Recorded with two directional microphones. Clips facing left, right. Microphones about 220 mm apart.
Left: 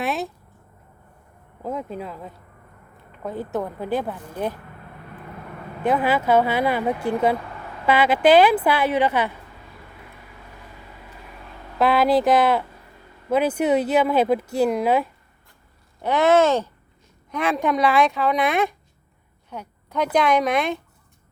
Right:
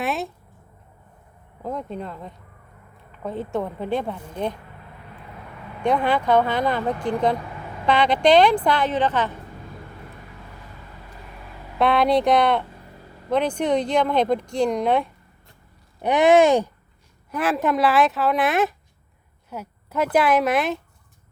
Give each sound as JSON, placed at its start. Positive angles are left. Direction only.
{"t": 0.0, "sound": "a sound", "side_deg": 0}
{"t": 1.6, "sound": "speech", "side_deg": 5}
{"t": 5.8, "sound": "speech", "side_deg": 5}
{"t": 11.8, "sound": "speech", "side_deg": 0}
{"t": 16.0, "sound": "speech", "side_deg": -15}
{"t": 17.3, "sound": "speech", "side_deg": -5}
{"t": 19.5, "sound": "a sound", "side_deg": -5}
{"t": 20.1, "sound": "speech", "side_deg": -5}